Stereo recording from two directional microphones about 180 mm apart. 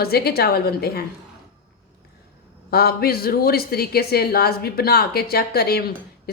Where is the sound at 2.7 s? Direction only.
60° left (ahead or behind).